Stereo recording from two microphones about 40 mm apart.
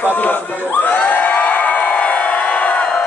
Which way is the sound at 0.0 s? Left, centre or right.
Left.